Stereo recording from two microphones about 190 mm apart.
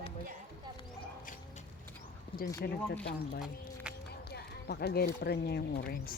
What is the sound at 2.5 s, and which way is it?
Speech, 55° left (ahead or behind).